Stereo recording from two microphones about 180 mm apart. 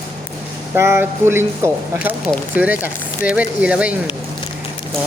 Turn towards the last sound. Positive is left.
turn(degrees=-5)  # may be behind; listen again after turning